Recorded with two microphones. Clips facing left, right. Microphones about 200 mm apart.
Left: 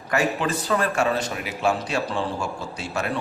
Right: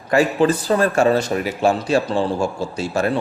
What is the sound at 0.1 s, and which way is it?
A man's voice, 30° right (ahead or behind).